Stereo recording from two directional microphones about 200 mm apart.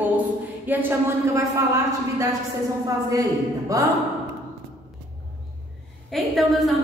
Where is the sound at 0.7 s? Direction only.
10° right (ahead or behind).